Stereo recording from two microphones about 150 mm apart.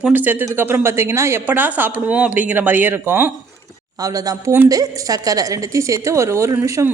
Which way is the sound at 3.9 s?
25° right (ahead or behind).